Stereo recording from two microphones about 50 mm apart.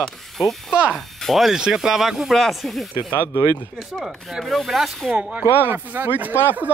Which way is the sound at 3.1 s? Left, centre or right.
Left.